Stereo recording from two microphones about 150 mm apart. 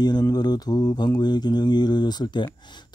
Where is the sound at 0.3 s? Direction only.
25° left (ahead or behind).